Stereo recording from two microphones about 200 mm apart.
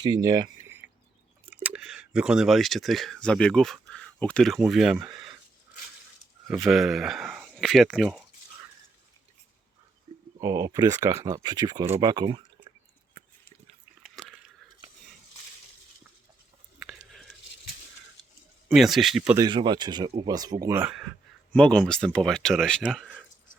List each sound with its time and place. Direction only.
0.0 s a sound: 20° right (ahead or behind)
1.6 s speech: 5° right (ahead or behind)
6.5 s speech: centre (ahead or behind)
10.4 s speech: 15° right (ahead or behind)
14.0 s biting: centre (ahead or behind)
16.8 s biting: centre (ahead or behind)
18.7 s speech: centre (ahead or behind)
19.4 s speech: 20° right (ahead or behind)
21.5 s speech: 5° left (ahead or behind)